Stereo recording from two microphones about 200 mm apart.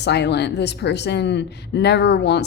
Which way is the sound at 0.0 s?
55° left (ahead or behind).